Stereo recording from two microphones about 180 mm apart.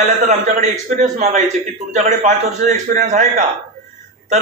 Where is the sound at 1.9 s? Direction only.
40° right (ahead or behind).